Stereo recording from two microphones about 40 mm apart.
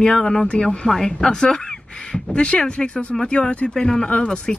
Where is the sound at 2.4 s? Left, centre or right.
Left.